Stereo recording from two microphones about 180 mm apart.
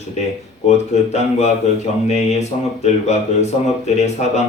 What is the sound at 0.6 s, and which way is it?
Speech, 40° left (ahead or behind).